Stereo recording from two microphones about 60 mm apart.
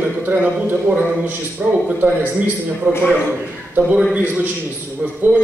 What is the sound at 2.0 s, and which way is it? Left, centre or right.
A man's voice, right.